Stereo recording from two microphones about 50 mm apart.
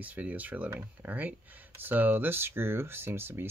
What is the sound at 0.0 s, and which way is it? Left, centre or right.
Speech, right.